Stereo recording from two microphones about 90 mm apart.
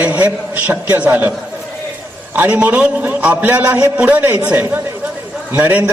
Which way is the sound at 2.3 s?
15° right (ahead or behind).